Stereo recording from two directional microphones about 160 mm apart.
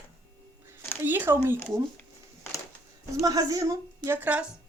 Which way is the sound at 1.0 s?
10° right (ahead or behind).